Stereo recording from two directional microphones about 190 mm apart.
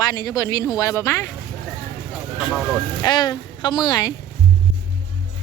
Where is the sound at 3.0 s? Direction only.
20° left (ahead or behind).